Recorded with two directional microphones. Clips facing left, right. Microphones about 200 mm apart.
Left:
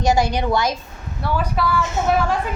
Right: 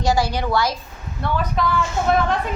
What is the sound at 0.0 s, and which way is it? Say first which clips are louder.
Speech: left 2 dB; 20° left (ahead or behind).